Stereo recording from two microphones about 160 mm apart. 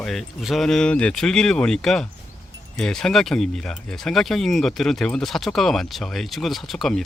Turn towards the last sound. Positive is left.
turn(degrees=0)  # may be behind; listen again after turning